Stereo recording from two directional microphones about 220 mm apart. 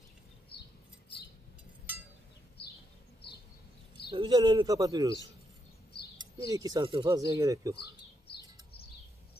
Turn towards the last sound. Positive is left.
turn(degrees=-15)  # may be behind; listen again after turning